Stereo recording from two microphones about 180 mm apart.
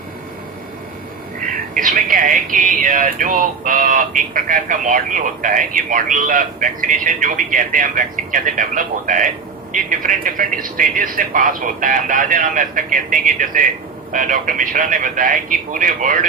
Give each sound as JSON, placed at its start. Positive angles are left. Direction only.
{"t": 1.7, "sound": "speech", "side_deg": -50}